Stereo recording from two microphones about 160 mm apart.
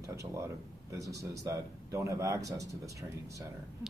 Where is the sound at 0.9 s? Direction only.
20° right (ahead or behind).